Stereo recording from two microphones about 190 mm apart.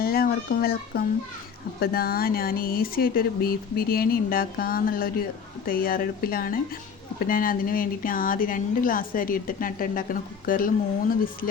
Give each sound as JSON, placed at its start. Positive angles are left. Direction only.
{"t": 0.0, "sound": "a woman's voice", "side_deg": 50}